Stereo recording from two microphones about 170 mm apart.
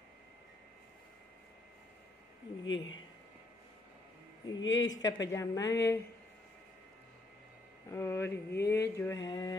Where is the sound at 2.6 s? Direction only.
90° left.